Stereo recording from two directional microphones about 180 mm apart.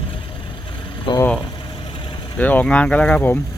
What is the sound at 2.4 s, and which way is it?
Speech, 10° left (ahead or behind).